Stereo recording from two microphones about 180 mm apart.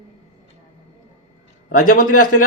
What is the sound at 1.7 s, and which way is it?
Speech, 50° left (ahead or behind).